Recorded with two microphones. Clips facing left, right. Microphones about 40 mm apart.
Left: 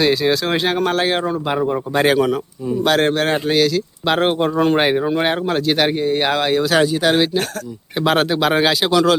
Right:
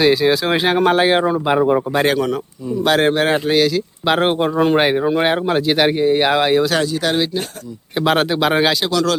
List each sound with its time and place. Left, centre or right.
0.0 s speech: centre
1.9 s speech: centre
2.8 s speech: centre
6.7 s speech: centre
7.9 s speech: centre
8.8 s speech: centre